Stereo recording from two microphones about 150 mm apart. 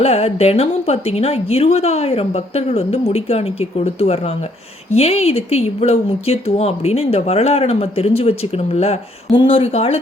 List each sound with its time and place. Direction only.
0.0 s speech: 45° left (ahead or behind)